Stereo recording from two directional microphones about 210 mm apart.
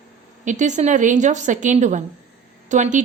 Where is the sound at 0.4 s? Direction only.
35° right (ahead or behind).